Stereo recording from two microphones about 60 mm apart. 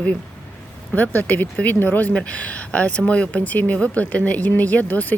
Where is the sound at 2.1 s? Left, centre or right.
Left.